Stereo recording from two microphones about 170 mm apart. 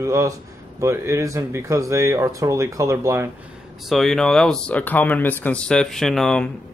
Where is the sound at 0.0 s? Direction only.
20° right (ahead or behind).